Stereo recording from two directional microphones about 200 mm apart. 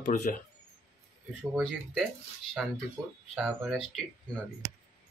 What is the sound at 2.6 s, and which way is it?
Speech, 5° right (ahead or behind).